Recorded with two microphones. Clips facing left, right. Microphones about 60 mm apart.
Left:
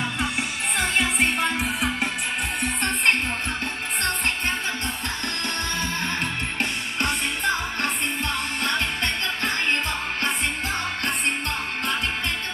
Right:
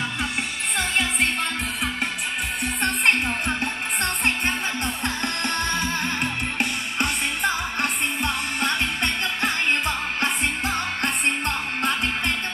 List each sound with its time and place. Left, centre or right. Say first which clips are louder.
0.7 s music: left 1 dB; centre
5.0 s music: right 3 dB; right
6.6 s music: right 1 dB; centre; by 11.9 s right